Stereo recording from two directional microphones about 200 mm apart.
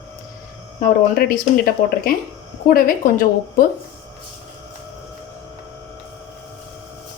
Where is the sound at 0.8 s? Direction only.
45° left (ahead or behind).